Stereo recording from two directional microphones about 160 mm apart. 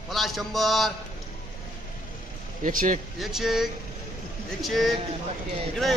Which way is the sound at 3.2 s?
Centre (ahead or behind).